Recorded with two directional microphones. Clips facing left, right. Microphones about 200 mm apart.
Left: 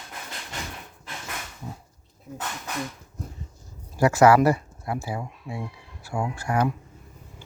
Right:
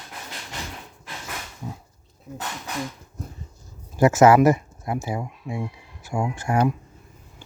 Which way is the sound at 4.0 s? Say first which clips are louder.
Right 2 dB; 20° right (ahead or behind).